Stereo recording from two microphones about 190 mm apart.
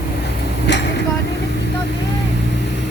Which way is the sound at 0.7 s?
65° left (ahead or behind).